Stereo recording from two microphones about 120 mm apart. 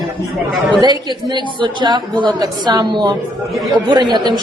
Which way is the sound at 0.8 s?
35° right (ahead or behind).